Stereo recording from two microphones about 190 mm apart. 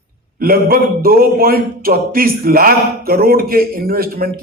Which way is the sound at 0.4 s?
50° right (ahead or behind).